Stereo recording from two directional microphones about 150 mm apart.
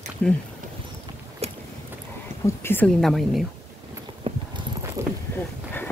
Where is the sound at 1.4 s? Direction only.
45° right (ahead or behind).